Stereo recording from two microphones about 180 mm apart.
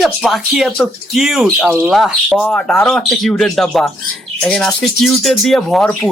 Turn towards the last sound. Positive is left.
turn(degrees=5)  # may be behind; listen again after turning